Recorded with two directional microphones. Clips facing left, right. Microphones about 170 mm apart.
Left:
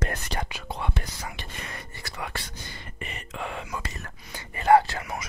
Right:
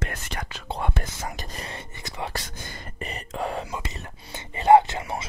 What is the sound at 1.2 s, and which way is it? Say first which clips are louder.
Whispering: right 3 dB; 40° right (ahead or behind).